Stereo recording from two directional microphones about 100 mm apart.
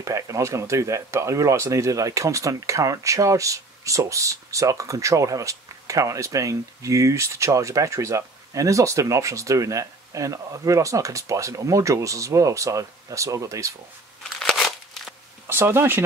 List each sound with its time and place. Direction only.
0.0 s speech: 30° right (ahead or behind)
14.4 s crumpling: 5° left (ahead or behind)
15.4 s speech: 25° right (ahead or behind)